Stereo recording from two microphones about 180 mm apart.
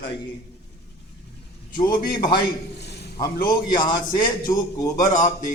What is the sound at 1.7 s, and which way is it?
Speech, 25° left (ahead or behind).